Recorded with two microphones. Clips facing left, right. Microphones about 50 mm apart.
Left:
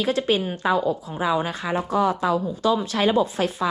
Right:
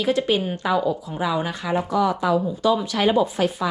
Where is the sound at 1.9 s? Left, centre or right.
Left.